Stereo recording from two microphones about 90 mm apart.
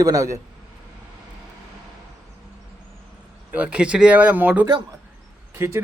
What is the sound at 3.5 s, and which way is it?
Speech, 15° right (ahead or behind).